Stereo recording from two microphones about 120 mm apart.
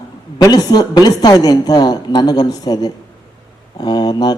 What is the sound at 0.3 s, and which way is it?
Speech, 35° left (ahead or behind).